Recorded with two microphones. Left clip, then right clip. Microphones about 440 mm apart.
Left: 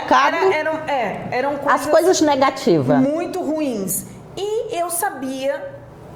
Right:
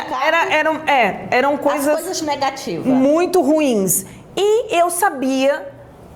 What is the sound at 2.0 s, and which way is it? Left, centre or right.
A woman's voice, left.